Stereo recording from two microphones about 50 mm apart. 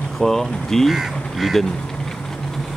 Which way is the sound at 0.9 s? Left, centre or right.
Centre.